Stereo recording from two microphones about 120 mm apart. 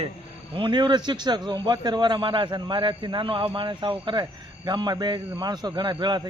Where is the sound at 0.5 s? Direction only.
40° right (ahead or behind).